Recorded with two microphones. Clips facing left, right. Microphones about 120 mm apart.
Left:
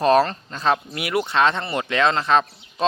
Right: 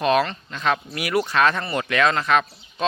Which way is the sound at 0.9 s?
25° left (ahead or behind).